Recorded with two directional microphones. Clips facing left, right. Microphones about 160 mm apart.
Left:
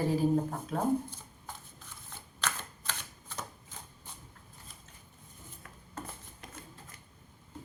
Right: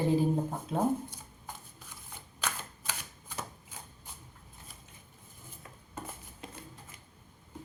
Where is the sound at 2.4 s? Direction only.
10° right (ahead or behind).